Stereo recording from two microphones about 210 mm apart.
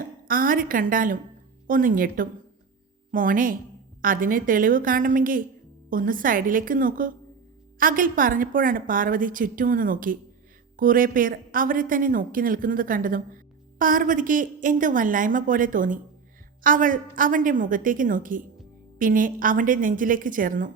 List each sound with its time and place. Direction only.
0.3 s a woman's voice: 40° right (ahead or behind)